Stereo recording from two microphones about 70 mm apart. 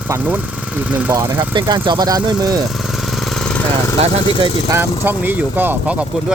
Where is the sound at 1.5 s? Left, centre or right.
Right.